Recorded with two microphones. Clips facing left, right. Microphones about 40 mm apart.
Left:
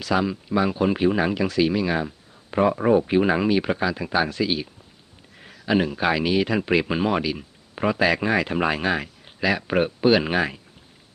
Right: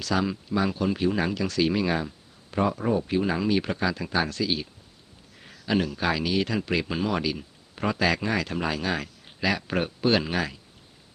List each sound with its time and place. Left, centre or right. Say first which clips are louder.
0.0 s speech: left 3 dB; centre
1.7 s speech: left 2 dB; centre
2.6 s speech: left 6 dB; left
3.5 s speech: left 3 dB; centre; by 9.0 s left
9.0 s speech: left 4 dB; centre
10.2 s speech: left 5 dB; left